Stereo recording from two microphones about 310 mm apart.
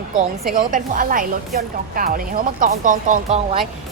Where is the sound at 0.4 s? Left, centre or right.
Right.